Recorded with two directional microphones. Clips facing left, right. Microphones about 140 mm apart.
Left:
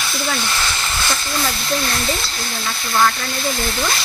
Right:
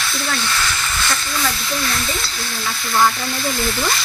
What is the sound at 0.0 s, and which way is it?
Speech, 10° left (ahead or behind).